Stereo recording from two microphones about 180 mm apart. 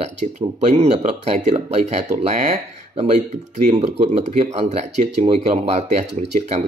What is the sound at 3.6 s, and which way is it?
Speech, 40° right (ahead or behind).